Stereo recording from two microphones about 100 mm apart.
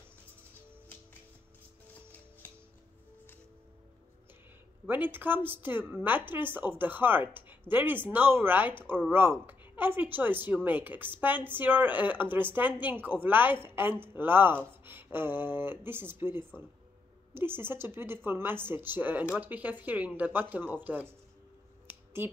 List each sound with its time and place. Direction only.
4.8 s a woman's voice: 20° right (ahead or behind)
21.8 s finger snapping: 20° right (ahead or behind)